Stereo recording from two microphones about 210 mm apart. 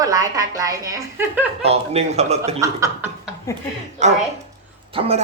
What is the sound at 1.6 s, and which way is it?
A man's voice, 30° right (ahead or behind).